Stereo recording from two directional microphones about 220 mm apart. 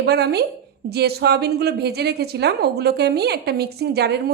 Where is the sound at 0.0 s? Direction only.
50° right (ahead or behind).